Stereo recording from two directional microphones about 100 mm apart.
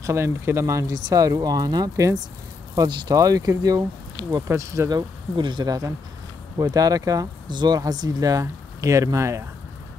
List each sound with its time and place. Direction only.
0.0 s speech: 30° right (ahead or behind)
4.9 s speech: 50° right (ahead or behind); by 9.4 s 30° right (ahead or behind)